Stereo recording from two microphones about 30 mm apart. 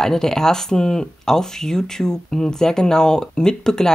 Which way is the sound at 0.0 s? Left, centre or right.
Centre.